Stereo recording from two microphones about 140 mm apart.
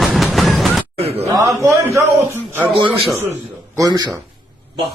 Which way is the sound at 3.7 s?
30° right (ahead or behind).